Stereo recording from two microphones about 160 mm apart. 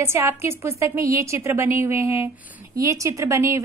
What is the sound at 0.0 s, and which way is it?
A woman's voice, 15° right (ahead or behind).